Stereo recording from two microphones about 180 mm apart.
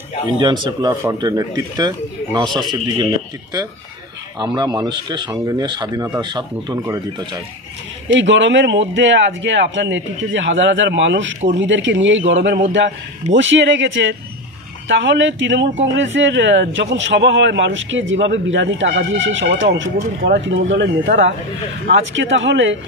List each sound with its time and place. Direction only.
0.4 s speech: 25° right (ahead or behind)
4.4 s speech: 25° right (ahead or behind)
8.1 s a man's voice: 90° right